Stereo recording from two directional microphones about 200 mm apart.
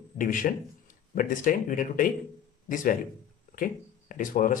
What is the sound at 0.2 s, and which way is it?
Speech, 40° left (ahead or behind).